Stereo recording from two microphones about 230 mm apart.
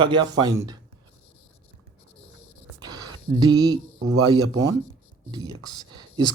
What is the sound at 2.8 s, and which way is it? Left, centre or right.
Speech, centre.